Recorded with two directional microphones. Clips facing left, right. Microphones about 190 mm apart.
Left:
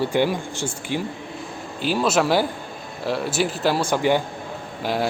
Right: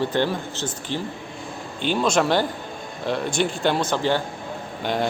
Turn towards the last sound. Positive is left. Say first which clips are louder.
# even
turn(degrees=5)  # may be behind; listen again after turning